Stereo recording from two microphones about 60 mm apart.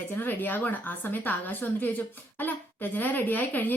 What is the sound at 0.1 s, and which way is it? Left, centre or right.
Speech, left.